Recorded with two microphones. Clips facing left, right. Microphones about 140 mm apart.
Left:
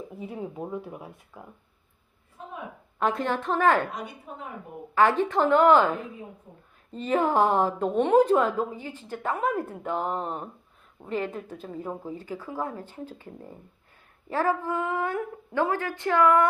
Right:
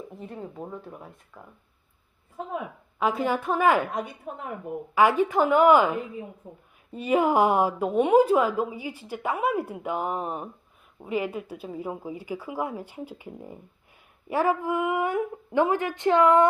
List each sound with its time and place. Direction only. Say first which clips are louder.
0.2 s speech: left 4 dB; 10° left (ahead or behind)
3.0 s a woman's voice: right 1 dB; 5° right (ahead or behind)
4.9 s a woman's voice: right 1 dB; 10° right (ahead or behind)